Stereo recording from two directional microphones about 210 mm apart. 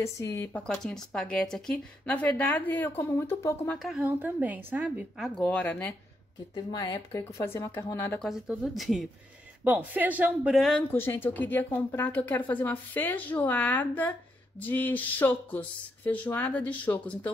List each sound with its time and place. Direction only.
0.0 s speech: 15° left (ahead or behind)
3.8 s speech: 5° right (ahead or behind)
6.5 s speech: 20° left (ahead or behind)
8.3 s speech: centre (ahead or behind)